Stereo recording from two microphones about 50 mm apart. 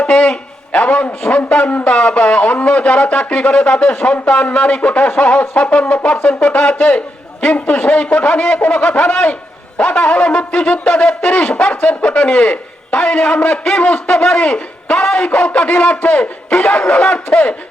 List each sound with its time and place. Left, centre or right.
0.0 s a man's voice: centre
1.2 s wind instrument: left
16.0 s wind instrument: left